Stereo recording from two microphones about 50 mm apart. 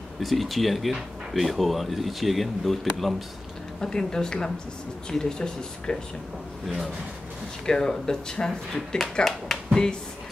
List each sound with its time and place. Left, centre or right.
0.2 s speech: centre
3.8 s speech: centre
7.6 s speech: centre
8.7 s speech: centre